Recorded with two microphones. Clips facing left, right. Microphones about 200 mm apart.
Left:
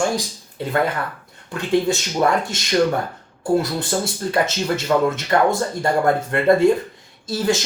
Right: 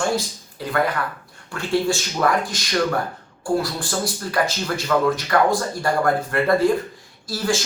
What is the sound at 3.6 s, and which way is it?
Speech, 25° left (ahead or behind).